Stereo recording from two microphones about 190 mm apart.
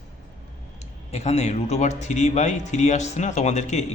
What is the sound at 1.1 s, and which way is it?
Speech, 35° left (ahead or behind).